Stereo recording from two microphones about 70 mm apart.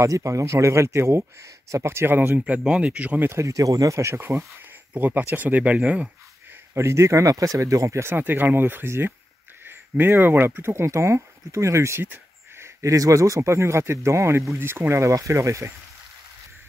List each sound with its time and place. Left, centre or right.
0.0 s speech: right; by 3.3 s centre
3.3 s speech: right
3.5 s speech: right
4.9 s speech: right
6.7 s speech: right
8.2 s speech: right